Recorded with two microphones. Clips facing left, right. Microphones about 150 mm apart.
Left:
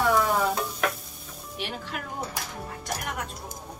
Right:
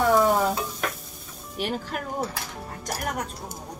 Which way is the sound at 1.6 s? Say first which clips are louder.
Right 6 dB; 40° right (ahead or behind).